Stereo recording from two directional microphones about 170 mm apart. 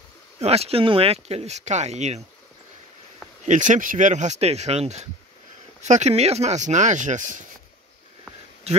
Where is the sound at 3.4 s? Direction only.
45° right (ahead or behind).